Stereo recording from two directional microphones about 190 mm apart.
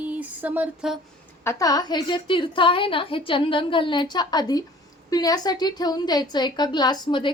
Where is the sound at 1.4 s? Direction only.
15° left (ahead or behind).